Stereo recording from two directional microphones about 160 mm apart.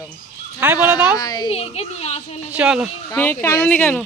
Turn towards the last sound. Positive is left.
turn(degrees=10)  # may be behind; listen again after turning